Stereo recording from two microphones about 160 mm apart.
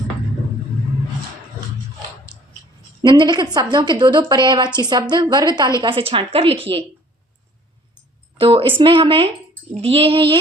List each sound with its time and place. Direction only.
2.3 s a sound: 5° right (ahead or behind)
3.0 s a woman's voice: 30° right (ahead or behind)
8.4 s a woman's voice: 35° right (ahead or behind)